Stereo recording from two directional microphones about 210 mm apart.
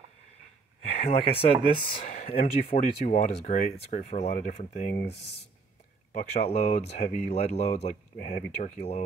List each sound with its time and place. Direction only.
0.8 s speech: 30° left (ahead or behind)
5.1 s speech: 90° left
6.1 s speech: 30° left (ahead or behind)